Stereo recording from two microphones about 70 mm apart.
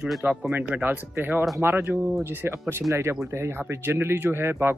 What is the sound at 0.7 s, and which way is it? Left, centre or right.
Speech, right.